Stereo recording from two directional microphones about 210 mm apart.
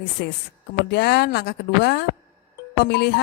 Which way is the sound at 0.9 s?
50° left (ahead or behind).